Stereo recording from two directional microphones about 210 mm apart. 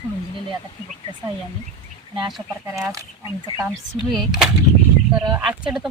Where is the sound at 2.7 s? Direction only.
15° right (ahead or behind).